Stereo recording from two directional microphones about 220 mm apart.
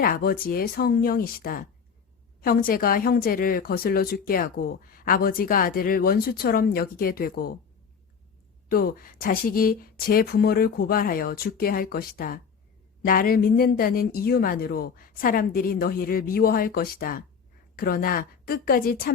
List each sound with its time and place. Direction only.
0.0 s a woman's voice: 40° left (ahead or behind)
8.7 s a woman's voice: 40° left (ahead or behind)